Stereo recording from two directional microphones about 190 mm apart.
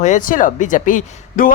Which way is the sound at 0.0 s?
40° left (ahead or behind).